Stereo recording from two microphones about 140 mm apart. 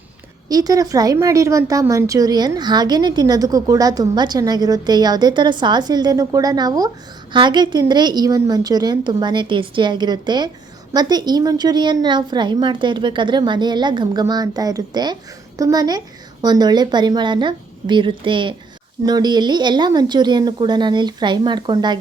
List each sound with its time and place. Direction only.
0.4 s a woman's voice: 25° right (ahead or behind)